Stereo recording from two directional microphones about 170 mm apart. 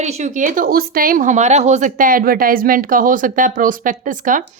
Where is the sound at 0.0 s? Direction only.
40° right (ahead or behind).